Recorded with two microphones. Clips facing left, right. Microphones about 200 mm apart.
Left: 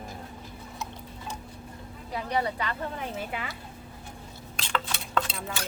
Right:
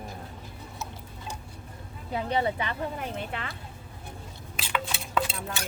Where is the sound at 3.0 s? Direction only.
5° left (ahead or behind).